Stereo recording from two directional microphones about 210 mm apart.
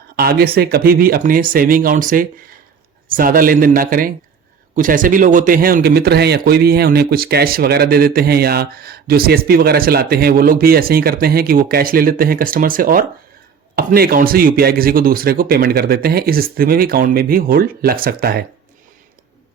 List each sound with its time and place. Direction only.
0.2 s a man's voice: 45° right (ahead or behind)